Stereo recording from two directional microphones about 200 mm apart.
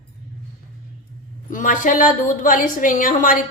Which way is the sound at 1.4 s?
40° left (ahead or behind).